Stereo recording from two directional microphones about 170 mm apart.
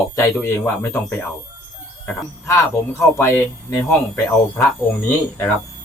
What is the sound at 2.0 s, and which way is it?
Speech, 15° left (ahead or behind).